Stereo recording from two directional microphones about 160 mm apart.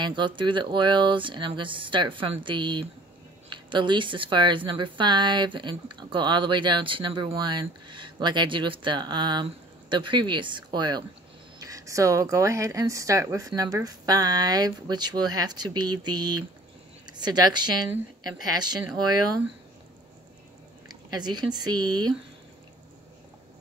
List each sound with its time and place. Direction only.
0.0 s speech: 30° right (ahead or behind)
20.9 s speech: 25° right (ahead or behind)